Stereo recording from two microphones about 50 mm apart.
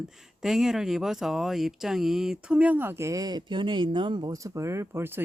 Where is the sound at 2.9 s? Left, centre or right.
Right.